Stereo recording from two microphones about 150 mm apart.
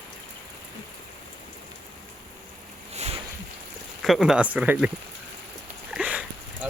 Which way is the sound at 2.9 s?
45° right (ahead or behind).